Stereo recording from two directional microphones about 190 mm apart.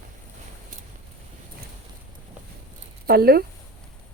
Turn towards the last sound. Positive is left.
turn(degrees=-55)  # may be behind; listen again after turning